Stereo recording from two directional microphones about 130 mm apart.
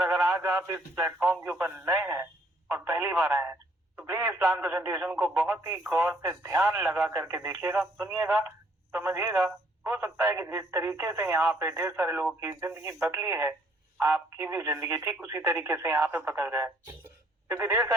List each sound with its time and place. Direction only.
0.1 s radio: 20° right (ahead or behind)
0.9 s speech: 15° right (ahead or behind)